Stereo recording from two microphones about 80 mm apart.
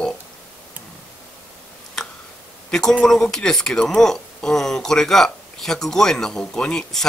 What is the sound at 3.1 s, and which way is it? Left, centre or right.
Speech, centre.